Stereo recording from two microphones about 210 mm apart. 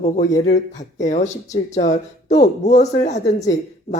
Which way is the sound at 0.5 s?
35° left (ahead or behind).